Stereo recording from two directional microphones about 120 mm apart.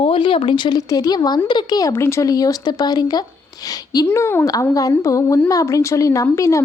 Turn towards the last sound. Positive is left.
turn(degrees=25)  # may be behind; listen again after turning